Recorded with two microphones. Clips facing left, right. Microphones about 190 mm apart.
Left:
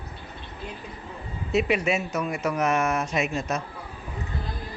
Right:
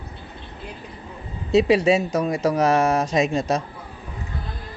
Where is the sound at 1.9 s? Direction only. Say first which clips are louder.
Right 7 dB; 35° right (ahead or behind).